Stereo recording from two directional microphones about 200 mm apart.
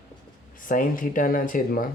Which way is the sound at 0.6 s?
45° left (ahead or behind).